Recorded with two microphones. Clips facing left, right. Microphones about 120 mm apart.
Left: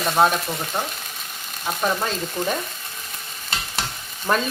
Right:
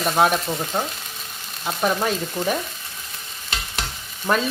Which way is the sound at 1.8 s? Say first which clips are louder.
Right 2 dB; 10° right (ahead or behind).